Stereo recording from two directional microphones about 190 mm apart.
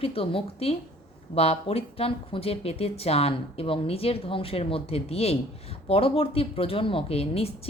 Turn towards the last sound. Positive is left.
turn(degrees=30)  # may be behind; listen again after turning